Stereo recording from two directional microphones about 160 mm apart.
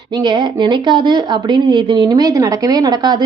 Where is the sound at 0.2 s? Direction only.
30° right (ahead or behind).